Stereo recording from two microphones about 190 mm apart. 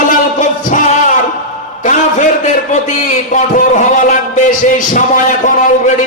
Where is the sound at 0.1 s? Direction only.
45° left (ahead or behind).